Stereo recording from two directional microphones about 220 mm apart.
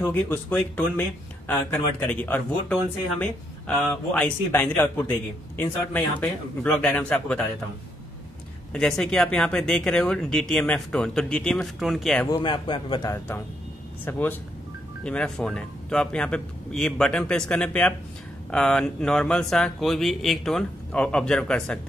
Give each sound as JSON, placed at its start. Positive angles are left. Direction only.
{"t": 0.0, "sound": "speech", "side_deg": 10}
{"t": 8.7, "sound": "speech", "side_deg": 0}
{"t": 12.3, "sound": "a man's voice", "side_deg": 20}